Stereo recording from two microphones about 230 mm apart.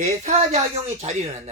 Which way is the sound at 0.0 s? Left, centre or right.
Right.